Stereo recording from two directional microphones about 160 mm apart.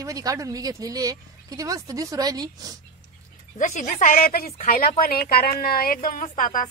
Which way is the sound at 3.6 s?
50° left (ahead or behind).